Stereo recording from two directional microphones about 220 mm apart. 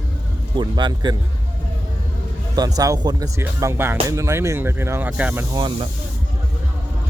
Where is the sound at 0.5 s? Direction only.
20° right (ahead or behind).